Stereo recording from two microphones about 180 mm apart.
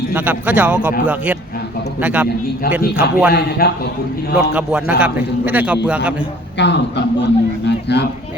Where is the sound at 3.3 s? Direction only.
60° left (ahead or behind).